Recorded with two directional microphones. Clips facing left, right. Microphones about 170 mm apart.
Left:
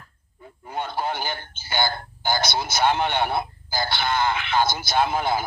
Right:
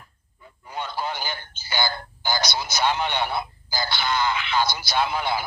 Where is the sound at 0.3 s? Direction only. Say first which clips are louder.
Left 3 dB; 50° left (ahead or behind).